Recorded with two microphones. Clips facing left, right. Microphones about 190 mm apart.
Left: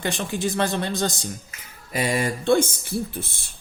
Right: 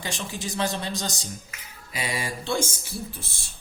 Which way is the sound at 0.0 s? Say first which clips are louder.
Left 7 dB; 55° left (ahead or behind).